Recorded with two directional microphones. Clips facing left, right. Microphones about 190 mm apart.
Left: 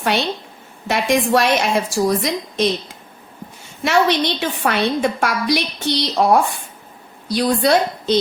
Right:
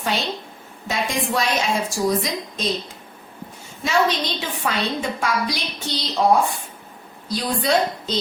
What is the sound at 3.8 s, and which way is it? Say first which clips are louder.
A woman's voice: left 4 dB; 75° left (ahead or behind).